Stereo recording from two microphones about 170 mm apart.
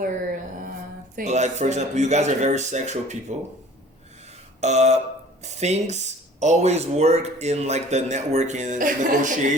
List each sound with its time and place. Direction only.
1.1 s speech: 40° right (ahead or behind)
4.6 s speech: 40° right (ahead or behind)